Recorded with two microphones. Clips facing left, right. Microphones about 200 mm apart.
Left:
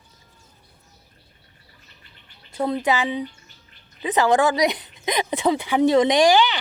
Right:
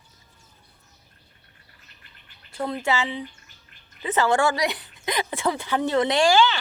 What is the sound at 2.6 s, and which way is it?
A woman's voice, 15° left (ahead or behind).